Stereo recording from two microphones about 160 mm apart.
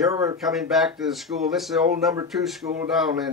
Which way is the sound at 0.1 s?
20° right (ahead or behind).